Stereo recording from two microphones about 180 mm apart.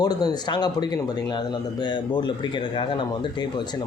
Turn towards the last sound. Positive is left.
turn(degrees=25)  # may be behind; listen again after turning